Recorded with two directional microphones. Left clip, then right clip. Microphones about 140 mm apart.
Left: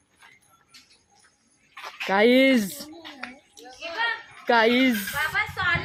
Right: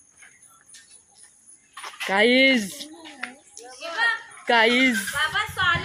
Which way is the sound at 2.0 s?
20° left (ahead or behind).